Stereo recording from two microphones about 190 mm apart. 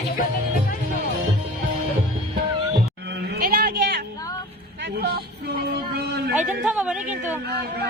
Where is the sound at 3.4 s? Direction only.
55° right (ahead or behind).